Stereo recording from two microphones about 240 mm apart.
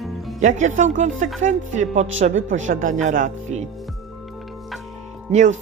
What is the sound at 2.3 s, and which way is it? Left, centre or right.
Speech, right.